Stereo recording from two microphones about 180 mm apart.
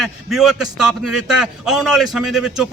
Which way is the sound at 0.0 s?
Centre (ahead or behind).